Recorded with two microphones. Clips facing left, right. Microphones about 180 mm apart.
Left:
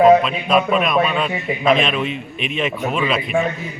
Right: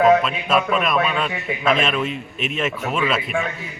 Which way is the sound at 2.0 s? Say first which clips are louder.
Left 1 dB; 40° right (ahead or behind).